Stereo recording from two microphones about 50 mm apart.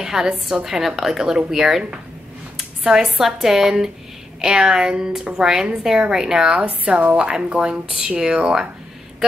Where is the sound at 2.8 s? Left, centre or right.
Centre.